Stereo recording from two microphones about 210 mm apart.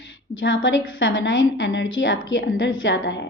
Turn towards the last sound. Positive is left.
turn(degrees=65)  # may be behind; listen again after turning